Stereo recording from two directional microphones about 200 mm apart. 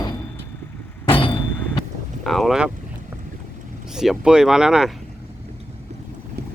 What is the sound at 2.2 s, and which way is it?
Speech, centre (ahead or behind).